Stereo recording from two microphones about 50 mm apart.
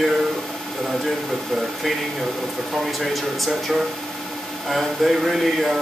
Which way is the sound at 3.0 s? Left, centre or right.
Centre.